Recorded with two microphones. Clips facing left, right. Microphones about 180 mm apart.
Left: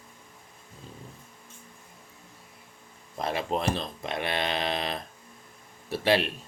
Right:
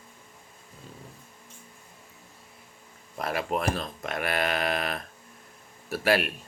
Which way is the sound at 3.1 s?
30° left (ahead or behind).